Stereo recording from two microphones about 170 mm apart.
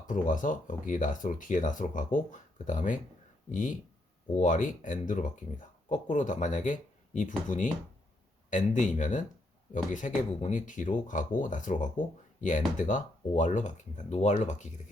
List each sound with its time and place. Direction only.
0.1 s speech: 50° left (ahead or behind)